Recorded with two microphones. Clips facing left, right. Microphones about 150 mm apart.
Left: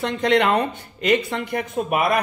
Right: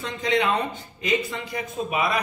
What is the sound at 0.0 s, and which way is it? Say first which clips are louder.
Speech: left 5 dB; 65° left (ahead or behind).